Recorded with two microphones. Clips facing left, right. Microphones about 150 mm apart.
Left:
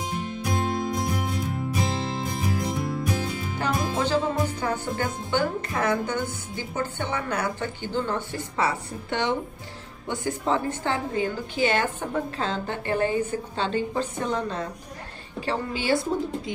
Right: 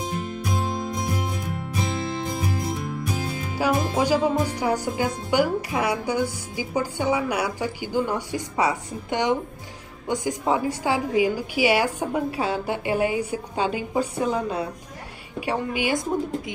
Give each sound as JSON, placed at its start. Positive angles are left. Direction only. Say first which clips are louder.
{"t": 3.5, "sound": "a woman's voice", "louder": "right 5 dB", "side_deg": -10}